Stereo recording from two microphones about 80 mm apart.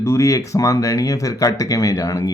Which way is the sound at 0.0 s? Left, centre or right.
Left.